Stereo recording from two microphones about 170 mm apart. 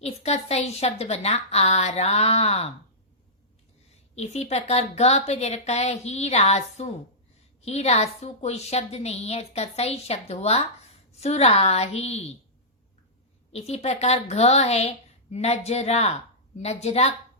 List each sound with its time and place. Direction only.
0.0 s a woman's voice: 40° left (ahead or behind)
4.1 s a woman's voice: 40° left (ahead or behind)
13.5 s a woman's voice: 40° left (ahead or behind)